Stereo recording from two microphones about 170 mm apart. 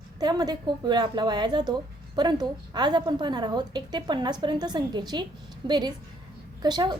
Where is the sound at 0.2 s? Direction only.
25° right (ahead or behind).